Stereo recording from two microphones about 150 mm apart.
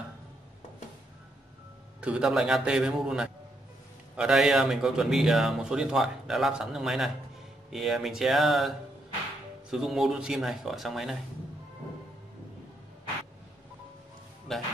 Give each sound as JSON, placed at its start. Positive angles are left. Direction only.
{"t": 2.0, "sound": "a man's voice", "side_deg": -5}
{"t": 14.5, "sound": "speech", "side_deg": 0}